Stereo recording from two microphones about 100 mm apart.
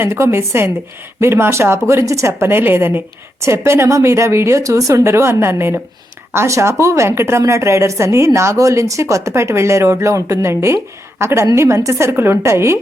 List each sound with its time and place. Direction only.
0.0 s a woman's voice: 25° right (ahead or behind)